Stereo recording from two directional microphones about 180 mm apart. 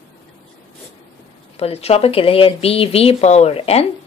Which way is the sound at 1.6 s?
35° left (ahead or behind).